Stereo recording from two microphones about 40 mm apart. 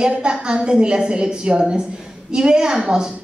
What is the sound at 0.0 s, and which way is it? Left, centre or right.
A man's voice, right.